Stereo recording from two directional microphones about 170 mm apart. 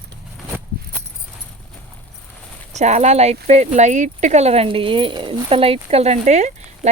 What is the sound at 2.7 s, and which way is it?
Speech, 40° right (ahead or behind).